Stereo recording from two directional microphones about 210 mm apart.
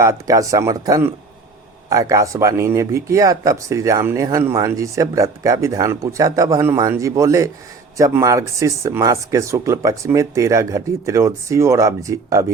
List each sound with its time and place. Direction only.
0.0 s speech: 15° right (ahead or behind)